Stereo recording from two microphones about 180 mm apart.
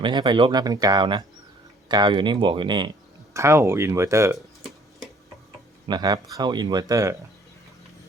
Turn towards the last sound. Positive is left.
turn(degrees=-20)  # may be behind; listen again after turning